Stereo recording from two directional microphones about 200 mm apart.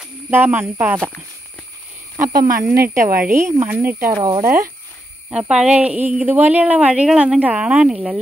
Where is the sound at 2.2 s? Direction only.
45° right (ahead or behind).